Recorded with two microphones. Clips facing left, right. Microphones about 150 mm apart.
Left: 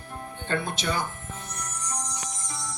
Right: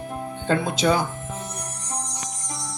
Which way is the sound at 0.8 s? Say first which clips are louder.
Right 10 dB; 90° right.